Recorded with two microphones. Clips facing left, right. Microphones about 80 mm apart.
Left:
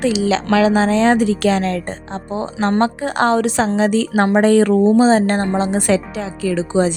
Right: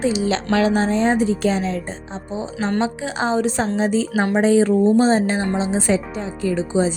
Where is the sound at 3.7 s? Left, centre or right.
Left.